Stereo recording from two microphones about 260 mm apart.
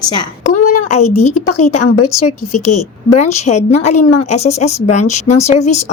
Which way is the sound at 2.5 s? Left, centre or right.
Left.